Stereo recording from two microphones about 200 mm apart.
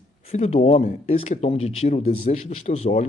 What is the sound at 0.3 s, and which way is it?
Speech, 30° left (ahead or behind).